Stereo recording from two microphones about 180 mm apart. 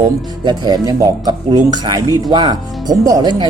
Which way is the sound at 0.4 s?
25° right (ahead or behind).